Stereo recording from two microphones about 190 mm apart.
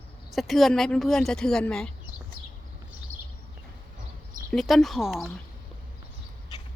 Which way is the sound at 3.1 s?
90° right.